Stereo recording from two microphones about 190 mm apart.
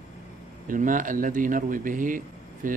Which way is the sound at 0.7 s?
45° right (ahead or behind).